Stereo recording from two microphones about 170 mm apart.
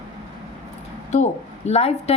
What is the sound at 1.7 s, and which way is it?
Speech, 40° left (ahead or behind).